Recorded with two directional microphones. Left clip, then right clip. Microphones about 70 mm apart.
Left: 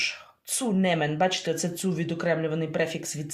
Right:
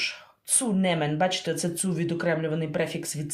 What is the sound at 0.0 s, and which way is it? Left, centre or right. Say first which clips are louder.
Speech: left 1 dB; left.